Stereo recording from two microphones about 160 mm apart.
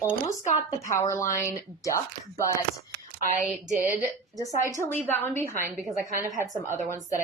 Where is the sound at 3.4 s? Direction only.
55° right (ahead or behind).